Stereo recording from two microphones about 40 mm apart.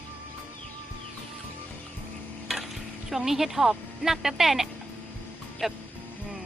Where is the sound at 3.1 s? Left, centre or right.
Centre.